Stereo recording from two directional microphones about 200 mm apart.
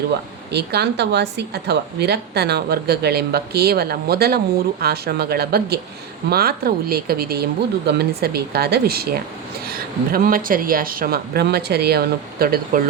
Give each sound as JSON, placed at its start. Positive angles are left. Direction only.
{"t": 0.5, "sound": "a woman's voice", "side_deg": -55}